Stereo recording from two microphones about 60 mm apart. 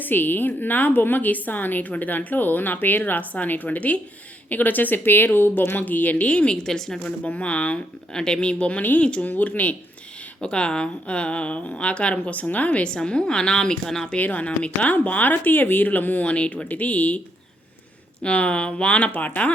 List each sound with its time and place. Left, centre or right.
0.0 s a woman's voice: left
6.2 s a woman's voice: centre
7.3 s a woman's voice: left
14.2 s speech: left
18.2 s speech: centre